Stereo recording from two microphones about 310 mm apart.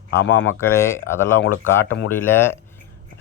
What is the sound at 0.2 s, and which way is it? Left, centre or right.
Speech, left.